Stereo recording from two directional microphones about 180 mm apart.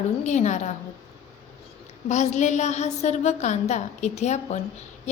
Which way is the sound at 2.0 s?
40° left (ahead or behind).